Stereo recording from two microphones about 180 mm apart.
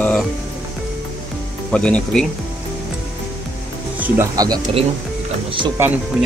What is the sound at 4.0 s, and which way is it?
Speech, 20° right (ahead or behind).